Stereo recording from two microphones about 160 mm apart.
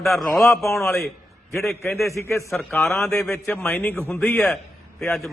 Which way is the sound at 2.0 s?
20° left (ahead or behind).